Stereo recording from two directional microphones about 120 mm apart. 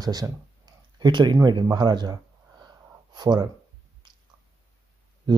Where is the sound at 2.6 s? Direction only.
35° right (ahead or behind).